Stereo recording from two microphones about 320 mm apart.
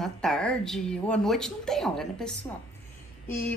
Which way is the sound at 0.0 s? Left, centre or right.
Centre.